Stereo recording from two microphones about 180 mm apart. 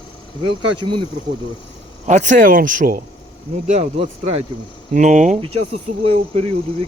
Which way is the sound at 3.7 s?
35° right (ahead or behind).